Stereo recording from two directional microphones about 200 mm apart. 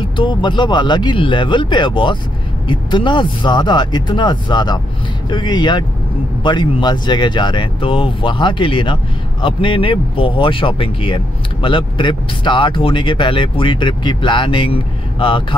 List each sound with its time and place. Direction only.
0.2 s speech: 25° left (ahead or behind)